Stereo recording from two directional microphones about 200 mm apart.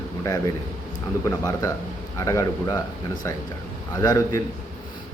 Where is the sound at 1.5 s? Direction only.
15° left (ahead or behind).